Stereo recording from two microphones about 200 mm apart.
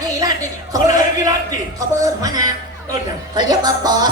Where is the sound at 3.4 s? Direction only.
20° right (ahead or behind).